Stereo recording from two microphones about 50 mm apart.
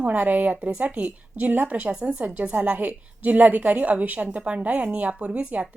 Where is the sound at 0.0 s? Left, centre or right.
Right.